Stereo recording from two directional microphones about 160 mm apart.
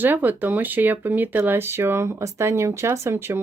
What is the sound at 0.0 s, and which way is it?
Speech, 10° right (ahead or behind).